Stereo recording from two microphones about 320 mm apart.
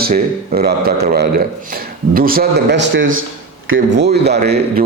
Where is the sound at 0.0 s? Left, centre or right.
Right.